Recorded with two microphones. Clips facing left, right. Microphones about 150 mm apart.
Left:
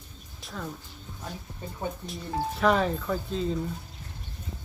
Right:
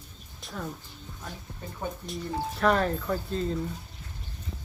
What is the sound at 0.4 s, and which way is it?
Speech, 5° right (ahead or behind).